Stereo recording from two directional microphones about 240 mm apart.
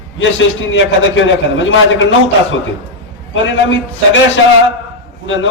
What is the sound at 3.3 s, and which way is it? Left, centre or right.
Speech, left.